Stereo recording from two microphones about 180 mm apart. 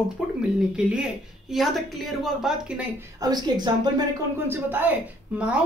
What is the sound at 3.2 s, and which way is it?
Speech, 20° right (ahead or behind).